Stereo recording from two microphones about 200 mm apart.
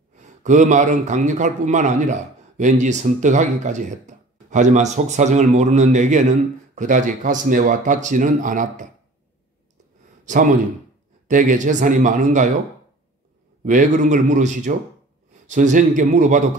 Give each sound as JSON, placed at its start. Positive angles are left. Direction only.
{"t": 0.1, "sound": "a man's voice", "side_deg": -35}
{"t": 10.2, "sound": "a man's voice", "side_deg": -40}
{"t": 13.7, "sound": "a man's voice", "side_deg": -35}